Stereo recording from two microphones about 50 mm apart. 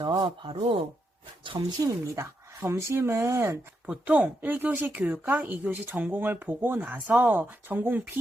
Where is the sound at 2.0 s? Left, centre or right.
Right.